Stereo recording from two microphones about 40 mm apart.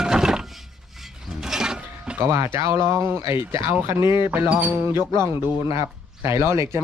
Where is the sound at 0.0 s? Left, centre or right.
Centre.